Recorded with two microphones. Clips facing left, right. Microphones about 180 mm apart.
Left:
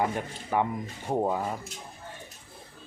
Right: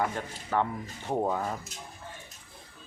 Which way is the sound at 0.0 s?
15° left (ahead or behind).